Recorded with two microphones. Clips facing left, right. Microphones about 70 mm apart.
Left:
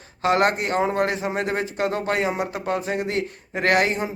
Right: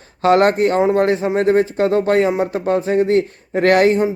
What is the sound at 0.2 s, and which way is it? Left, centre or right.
Speech, right.